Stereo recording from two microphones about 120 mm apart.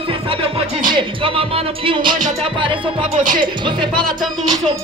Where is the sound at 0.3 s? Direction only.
45° right (ahead or behind).